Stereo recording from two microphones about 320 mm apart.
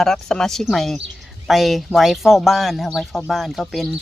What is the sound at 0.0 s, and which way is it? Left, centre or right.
Speech, centre.